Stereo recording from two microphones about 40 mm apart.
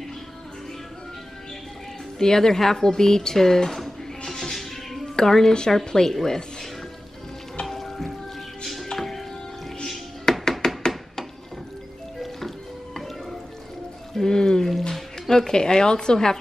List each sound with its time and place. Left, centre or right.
2.1 s speech: centre
4.3 s music: centre
5.1 s speech: centre
7.6 s music: centre
10.6 s a sound: centre
12.2 s music: centre
14.1 s pour: centre
14.7 s a sound: centre